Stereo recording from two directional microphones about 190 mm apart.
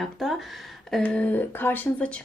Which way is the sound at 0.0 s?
Centre (ahead or behind).